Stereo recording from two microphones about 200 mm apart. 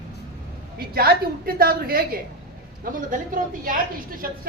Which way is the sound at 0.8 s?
50° right (ahead or behind).